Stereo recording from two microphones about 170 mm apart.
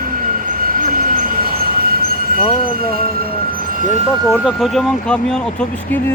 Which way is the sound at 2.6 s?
60° right (ahead or behind).